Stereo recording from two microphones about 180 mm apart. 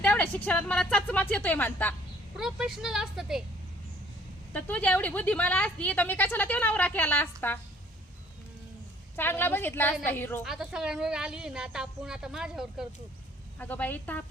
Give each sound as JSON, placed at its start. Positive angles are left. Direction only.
{"t": 0.0, "sound": "a sound", "side_deg": 10}
{"t": 0.4, "sound": "a woman's voice", "side_deg": 5}
{"t": 2.3, "sound": "speech", "side_deg": -5}
{"t": 4.5, "sound": "a woman's voice", "side_deg": 10}
{"t": 9.1, "sound": "a woman's voice", "side_deg": 10}
{"t": 10.4, "sound": "speech", "side_deg": -5}
{"t": 13.6, "sound": "a woman's voice", "side_deg": 10}